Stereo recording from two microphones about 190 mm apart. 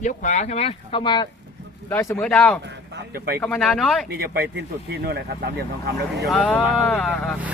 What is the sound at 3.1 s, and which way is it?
Speech, 55° right (ahead or behind).